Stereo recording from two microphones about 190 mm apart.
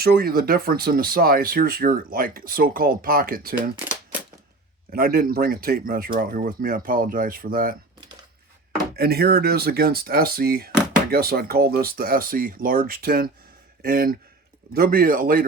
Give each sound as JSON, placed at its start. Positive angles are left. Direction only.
{"t": 0.0, "sound": "speech", "side_deg": -55}
{"t": 4.9, "sound": "speech", "side_deg": -50}
{"t": 9.0, "sound": "speech", "side_deg": -55}